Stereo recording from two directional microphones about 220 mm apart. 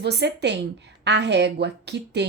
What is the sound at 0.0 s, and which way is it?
A woman's voice, 50° right (ahead or behind).